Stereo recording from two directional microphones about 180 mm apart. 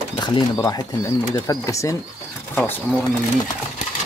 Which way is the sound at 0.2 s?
25° left (ahead or behind).